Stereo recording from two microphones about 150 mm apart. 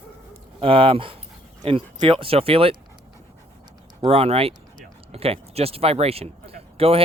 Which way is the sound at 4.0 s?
40° right (ahead or behind).